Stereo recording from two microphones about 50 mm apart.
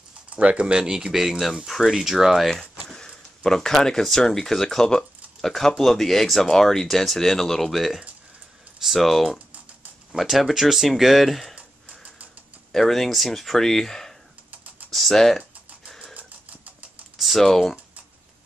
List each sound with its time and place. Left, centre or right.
0.3 s speech: right; by 2.5 s centre
2.5 s speech: centre
11.5 s a sound: centre
12.7 s speech: centre
17.2 s speech: centre